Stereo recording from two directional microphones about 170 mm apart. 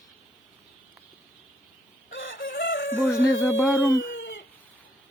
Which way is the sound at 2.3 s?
60° left (ahead or behind).